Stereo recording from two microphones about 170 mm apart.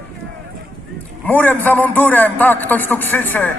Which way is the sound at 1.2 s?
10° left (ahead or behind).